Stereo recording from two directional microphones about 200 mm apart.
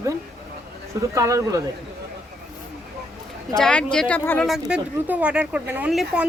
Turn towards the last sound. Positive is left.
turn(degrees=-5)  # may be behind; listen again after turning